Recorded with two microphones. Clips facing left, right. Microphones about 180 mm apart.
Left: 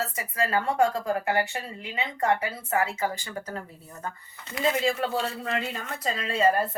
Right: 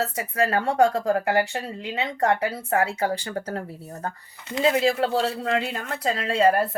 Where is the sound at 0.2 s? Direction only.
80° right.